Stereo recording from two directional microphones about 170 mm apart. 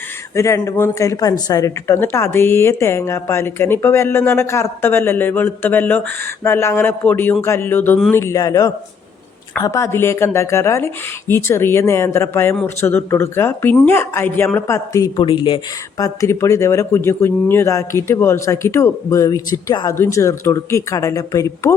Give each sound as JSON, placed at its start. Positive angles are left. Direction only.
{"t": 0.3, "sound": "speech", "side_deg": 20}